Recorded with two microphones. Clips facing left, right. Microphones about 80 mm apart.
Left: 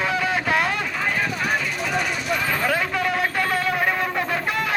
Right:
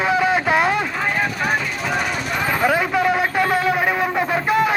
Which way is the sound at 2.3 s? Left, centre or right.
Centre.